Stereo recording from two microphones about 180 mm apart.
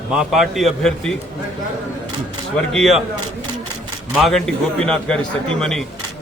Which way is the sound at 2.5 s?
Centre (ahead or behind).